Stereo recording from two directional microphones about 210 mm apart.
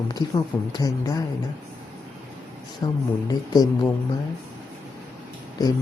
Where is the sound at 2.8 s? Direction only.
20° left (ahead or behind).